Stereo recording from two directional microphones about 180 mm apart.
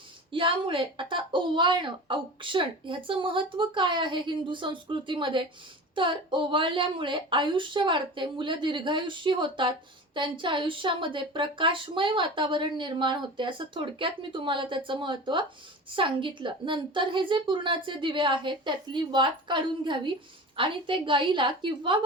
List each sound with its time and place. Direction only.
0.3 s speech: 30° right (ahead or behind)